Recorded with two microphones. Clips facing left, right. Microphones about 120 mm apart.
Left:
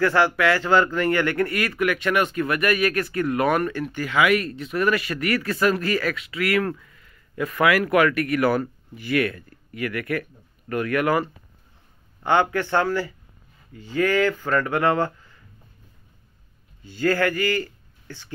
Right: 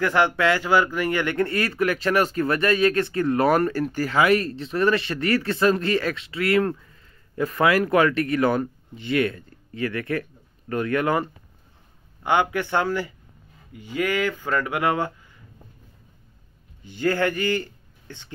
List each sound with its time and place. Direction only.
0.0 s speech: 20° right (ahead or behind)
16.8 s a man's voice: 20° right (ahead or behind)